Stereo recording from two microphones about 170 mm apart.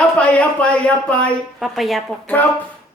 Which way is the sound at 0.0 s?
5° left (ahead or behind).